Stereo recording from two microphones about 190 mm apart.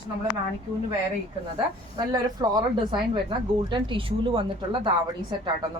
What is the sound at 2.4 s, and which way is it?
A woman's voice, 25° right (ahead or behind).